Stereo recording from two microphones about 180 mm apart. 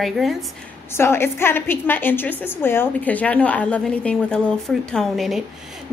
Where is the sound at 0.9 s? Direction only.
15° left (ahead or behind).